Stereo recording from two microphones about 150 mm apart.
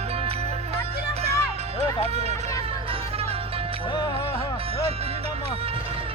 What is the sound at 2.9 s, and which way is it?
Music, 40° right (ahead or behind).